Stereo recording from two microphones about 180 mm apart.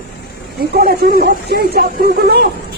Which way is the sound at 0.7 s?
60° right (ahead or behind).